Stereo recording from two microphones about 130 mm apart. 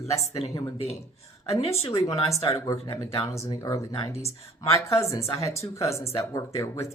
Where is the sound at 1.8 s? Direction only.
25° left (ahead or behind).